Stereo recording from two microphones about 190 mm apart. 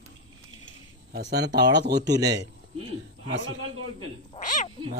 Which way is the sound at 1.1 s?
60° right (ahead or behind).